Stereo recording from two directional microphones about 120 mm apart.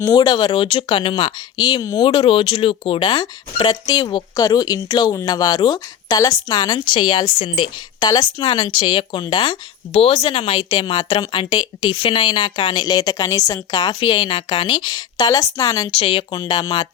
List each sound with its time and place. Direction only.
0.0 s speech: 30° left (ahead or behind)
2.0 s speech: 45° left (ahead or behind)
14.0 s speech: 45° left (ahead or behind)
16.0 s speech: 50° left (ahead or behind)
16.4 s speech: 35° left (ahead or behind)